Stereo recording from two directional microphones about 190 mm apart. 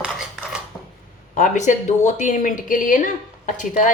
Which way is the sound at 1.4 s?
40° left (ahead or behind).